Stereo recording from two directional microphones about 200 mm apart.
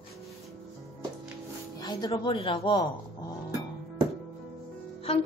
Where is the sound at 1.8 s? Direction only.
20° left (ahead or behind).